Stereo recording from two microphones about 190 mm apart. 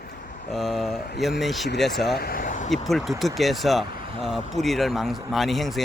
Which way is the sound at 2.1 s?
50° left (ahead or behind).